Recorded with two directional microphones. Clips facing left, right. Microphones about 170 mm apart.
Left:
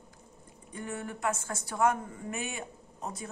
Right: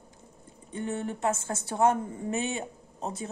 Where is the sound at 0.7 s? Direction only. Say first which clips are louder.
Right 6 dB; 25° right (ahead or behind).